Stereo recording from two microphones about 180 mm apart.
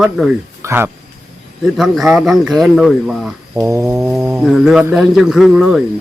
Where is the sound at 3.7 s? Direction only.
15° right (ahead or behind).